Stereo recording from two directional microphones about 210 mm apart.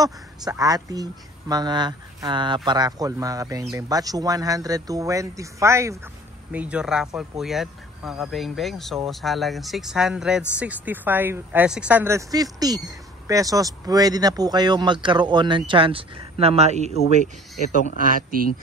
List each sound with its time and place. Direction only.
0.0 s speech: 15° right (ahead or behind); by 17.0 s 30° right (ahead or behind)
18.1 s speech: 45° right (ahead or behind)